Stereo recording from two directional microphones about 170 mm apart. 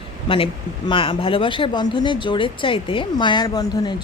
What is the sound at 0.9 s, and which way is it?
Speech, 30° left (ahead or behind).